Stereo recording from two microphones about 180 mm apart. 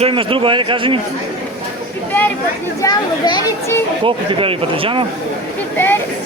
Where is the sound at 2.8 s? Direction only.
25° left (ahead or behind).